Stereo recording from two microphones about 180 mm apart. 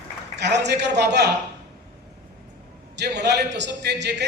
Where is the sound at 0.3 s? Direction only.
70° right (ahead or behind).